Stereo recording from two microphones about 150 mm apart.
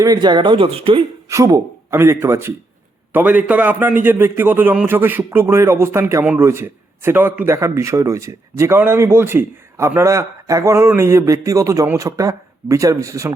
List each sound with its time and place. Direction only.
0.0 s speech: 25° right (ahead or behind)
1.3 s a man's voice: 20° right (ahead or behind)